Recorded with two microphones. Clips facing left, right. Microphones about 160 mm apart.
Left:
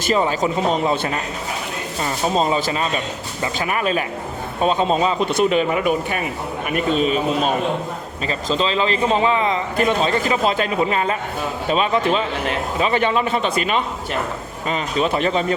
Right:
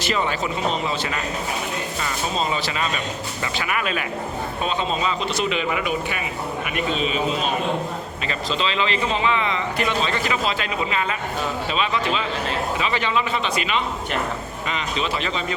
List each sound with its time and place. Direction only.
0.0 s a man's voice: 40° left (ahead or behind)
2.3 s a man's voice: 45° left (ahead or behind)